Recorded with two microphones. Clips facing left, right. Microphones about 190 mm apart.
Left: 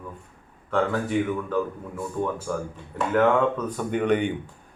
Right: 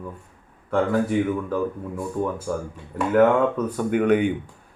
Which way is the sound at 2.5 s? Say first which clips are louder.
Right 2 dB; 15° right (ahead or behind).